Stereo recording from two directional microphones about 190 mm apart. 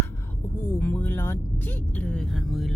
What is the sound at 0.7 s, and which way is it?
Speech, 10° left (ahead or behind).